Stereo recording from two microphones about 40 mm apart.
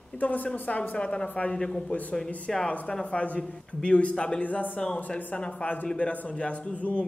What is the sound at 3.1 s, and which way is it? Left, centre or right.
A man's voice, left.